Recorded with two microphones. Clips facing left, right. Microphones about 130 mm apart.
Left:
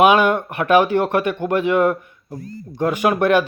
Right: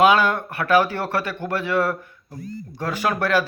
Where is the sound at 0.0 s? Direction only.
20° left (ahead or behind).